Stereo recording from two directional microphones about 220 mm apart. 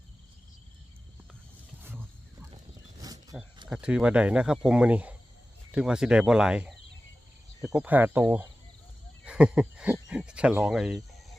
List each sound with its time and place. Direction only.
3.0 s wild animals: 15° right (ahead or behind)
3.7 s speech: 5° right (ahead or behind)